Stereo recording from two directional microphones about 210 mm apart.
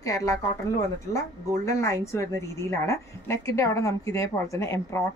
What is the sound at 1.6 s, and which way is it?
A woman's voice, 15° left (ahead or behind).